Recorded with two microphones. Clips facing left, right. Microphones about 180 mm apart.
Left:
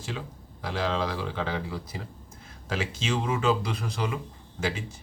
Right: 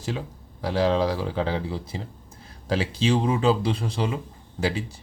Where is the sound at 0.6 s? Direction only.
35° right (ahead or behind).